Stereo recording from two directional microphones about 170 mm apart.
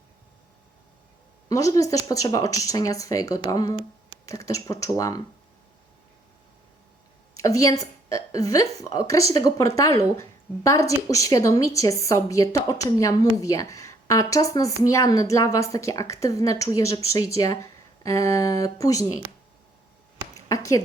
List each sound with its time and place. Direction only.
1.5 s a woman's voice: 20° left (ahead or behind)
7.4 s a woman's voice: 20° left (ahead or behind)
20.3 s a sound: 20° left (ahead or behind)